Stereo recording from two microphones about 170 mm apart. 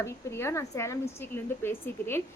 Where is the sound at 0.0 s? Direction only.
15° left (ahead or behind).